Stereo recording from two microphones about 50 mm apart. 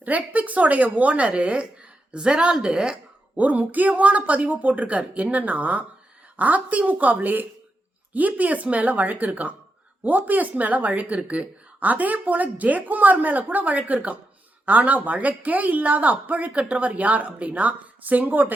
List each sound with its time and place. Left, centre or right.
0.0 s a woman's voice: right; by 3.0 s centre
3.3 s a woman's voice: right